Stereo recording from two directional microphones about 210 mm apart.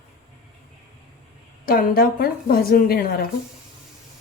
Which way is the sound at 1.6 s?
40° left (ahead or behind).